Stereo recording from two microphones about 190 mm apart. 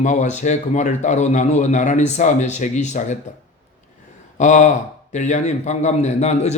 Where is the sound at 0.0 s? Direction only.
40° left (ahead or behind).